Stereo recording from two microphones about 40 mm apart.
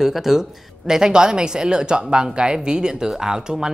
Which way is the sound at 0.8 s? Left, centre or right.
Centre.